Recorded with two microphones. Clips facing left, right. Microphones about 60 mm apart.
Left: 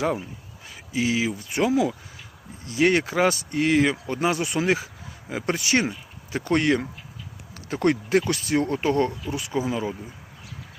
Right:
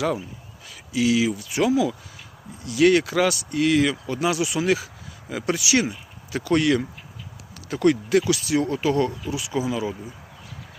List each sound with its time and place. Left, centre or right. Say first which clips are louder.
0.0 s speech: right 1 dB; left
0.7 s a sound: right 3 dB; left
1.4 s speech: right 1 dB; left